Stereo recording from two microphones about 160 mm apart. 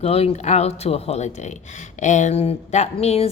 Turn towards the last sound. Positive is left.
turn(degrees=40)  # may be behind; listen again after turning